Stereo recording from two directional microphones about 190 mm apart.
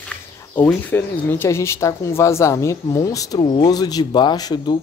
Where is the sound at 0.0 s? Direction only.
10° left (ahead or behind).